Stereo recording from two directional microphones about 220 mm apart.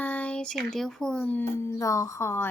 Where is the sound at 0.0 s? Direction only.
5° left (ahead or behind).